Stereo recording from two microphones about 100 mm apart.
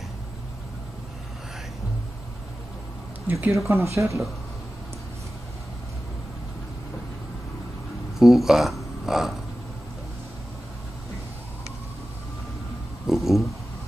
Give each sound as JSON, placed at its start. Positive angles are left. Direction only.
{"t": 3.3, "sound": "speech", "side_deg": -20}
{"t": 8.2, "sound": "speech", "side_deg": -5}
{"t": 13.0, "sound": "a sound", "side_deg": 0}